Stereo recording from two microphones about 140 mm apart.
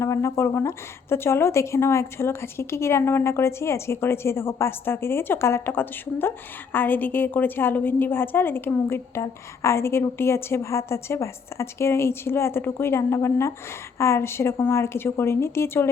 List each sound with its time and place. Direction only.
0.0 s a woman's voice: 20° left (ahead or behind)